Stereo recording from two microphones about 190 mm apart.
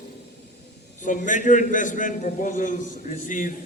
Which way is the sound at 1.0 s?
40° left (ahead or behind).